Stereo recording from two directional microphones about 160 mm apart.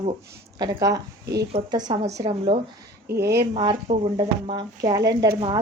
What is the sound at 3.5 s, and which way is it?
A woman's voice, 30° right (ahead or behind).